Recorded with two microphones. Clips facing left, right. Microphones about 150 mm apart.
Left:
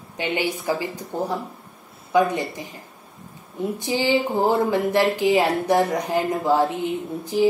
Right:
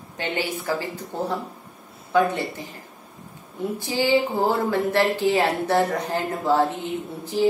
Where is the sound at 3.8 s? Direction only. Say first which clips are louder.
Right 1 dB; 15° left (ahead or behind).